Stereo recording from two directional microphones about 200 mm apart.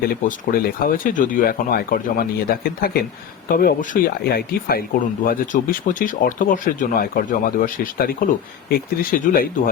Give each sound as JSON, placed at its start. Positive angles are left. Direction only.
{"t": 0.3, "sound": "speech", "side_deg": 45}